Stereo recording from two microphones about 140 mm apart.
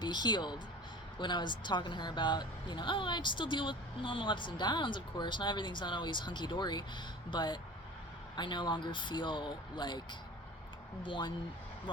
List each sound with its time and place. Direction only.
0.0 s speech: 30° left (ahead or behind)